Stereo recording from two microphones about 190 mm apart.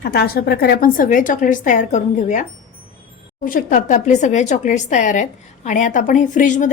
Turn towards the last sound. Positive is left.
turn(degrees=40)  # may be behind; listen again after turning